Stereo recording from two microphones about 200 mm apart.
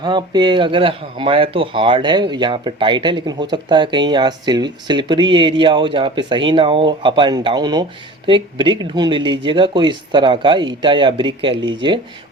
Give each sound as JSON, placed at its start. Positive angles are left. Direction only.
{"t": 0.0, "sound": "speech", "side_deg": -20}